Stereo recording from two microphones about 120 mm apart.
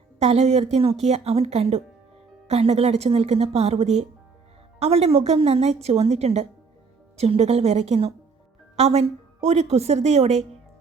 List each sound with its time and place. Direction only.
0.2 s a woman's voice: 60° right (ahead or behind)